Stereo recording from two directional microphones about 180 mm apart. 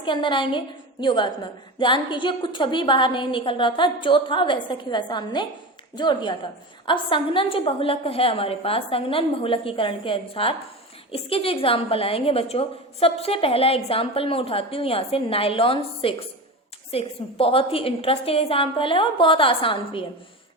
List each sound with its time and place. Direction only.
0.0 s a woman's voice: 25° left (ahead or behind)